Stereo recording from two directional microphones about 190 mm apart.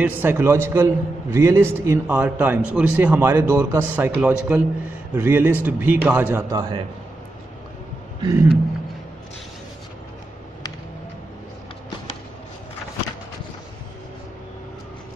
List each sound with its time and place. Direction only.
0.0 s a man's voice: 10° right (ahead or behind)
6.5 s a man's voice: 20° right (ahead or behind)
8.2 s speech: 20° right (ahead or behind)